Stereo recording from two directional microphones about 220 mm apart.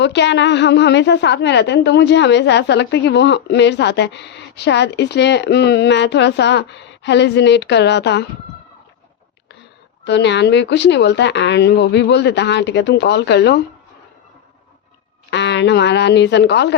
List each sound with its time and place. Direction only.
0.0 s a woman's voice: 50° left (ahead or behind)
10.0 s a woman's voice: 55° left (ahead or behind)
15.3 s a woman's voice: 50° left (ahead or behind)